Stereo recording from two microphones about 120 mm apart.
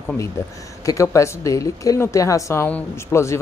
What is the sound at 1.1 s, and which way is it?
Speech, 25° left (ahead or behind).